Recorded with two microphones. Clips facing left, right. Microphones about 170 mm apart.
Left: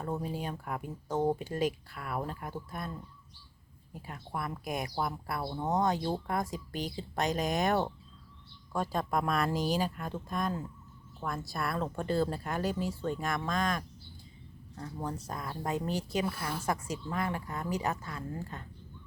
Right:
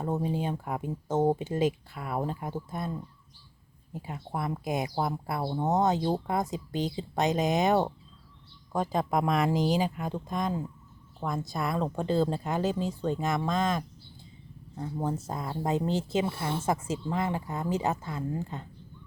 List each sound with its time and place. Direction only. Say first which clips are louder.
0.0 s speech: right 5 dB; 20° right (ahead or behind)
3.9 s speech: right 4 dB; 25° right (ahead or behind)